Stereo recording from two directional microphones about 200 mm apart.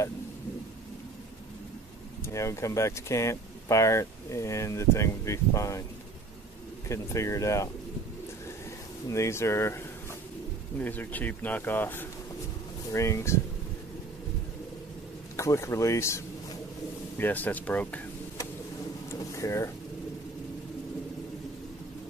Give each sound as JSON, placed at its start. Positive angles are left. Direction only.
{"t": 2.2, "sound": "speech", "side_deg": 15}
{"t": 6.9, "sound": "speech", "side_deg": 15}
{"t": 9.1, "sound": "speech", "side_deg": 15}
{"t": 10.8, "sound": "speech", "side_deg": 10}
{"t": 15.3, "sound": "speech", "side_deg": 15}
{"t": 17.2, "sound": "speech", "side_deg": 10}
{"t": 19.1, "sound": "a sound", "side_deg": 15}